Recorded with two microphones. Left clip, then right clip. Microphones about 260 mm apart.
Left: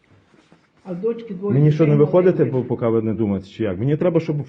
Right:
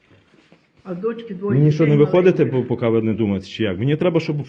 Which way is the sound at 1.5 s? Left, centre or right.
Right.